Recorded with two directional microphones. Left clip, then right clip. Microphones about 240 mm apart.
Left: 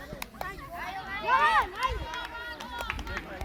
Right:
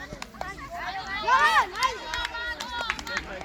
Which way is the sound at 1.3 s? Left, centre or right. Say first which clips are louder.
Right 3 dB; right.